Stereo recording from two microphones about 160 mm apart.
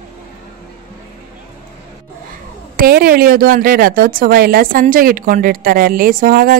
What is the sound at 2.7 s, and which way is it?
Speech, 65° right (ahead or behind).